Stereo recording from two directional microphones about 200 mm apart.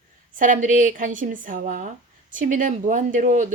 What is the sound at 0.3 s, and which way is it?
A woman's voice, 40° right (ahead or behind).